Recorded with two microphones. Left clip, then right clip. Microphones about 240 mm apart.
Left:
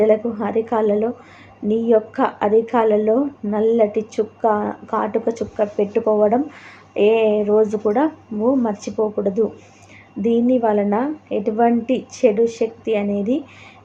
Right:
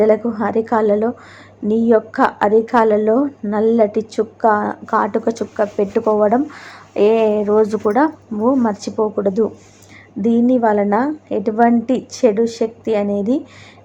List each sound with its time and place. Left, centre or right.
0.0 s a woman's voice: centre